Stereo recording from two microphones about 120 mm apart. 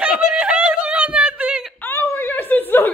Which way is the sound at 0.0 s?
10° right (ahead or behind).